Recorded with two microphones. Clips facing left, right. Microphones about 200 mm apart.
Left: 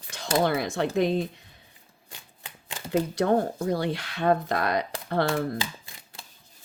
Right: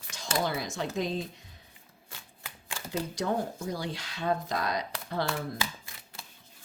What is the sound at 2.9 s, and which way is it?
Speech, 60° left (ahead or behind).